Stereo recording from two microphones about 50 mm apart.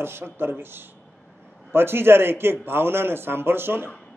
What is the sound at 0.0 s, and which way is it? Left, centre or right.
Speech, right.